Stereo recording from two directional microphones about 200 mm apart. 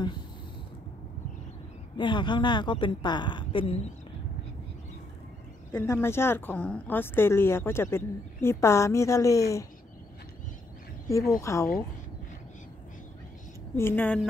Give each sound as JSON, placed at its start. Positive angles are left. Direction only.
{"t": 2.0, "sound": "a woman's voice", "side_deg": 25}
{"t": 5.7, "sound": "speech", "side_deg": 10}
{"t": 11.1, "sound": "speech", "side_deg": 15}
{"t": 13.7, "sound": "speech", "side_deg": 10}